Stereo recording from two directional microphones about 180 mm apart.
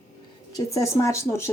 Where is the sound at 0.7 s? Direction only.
15° left (ahead or behind).